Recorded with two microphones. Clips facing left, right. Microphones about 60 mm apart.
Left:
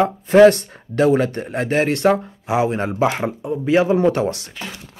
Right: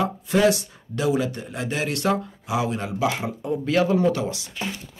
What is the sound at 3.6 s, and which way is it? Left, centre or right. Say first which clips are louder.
Speech: left 5 dB; left.